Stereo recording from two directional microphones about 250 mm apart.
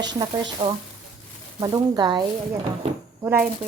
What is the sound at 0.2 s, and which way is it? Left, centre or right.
Speech, centre.